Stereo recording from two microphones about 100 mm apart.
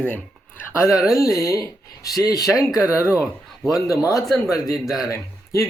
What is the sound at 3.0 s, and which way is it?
Speech, 10° right (ahead or behind).